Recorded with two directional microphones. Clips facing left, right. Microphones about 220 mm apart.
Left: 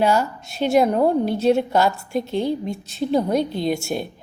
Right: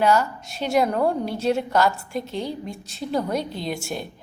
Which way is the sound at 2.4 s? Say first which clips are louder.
Left 7 dB; 25° left (ahead or behind).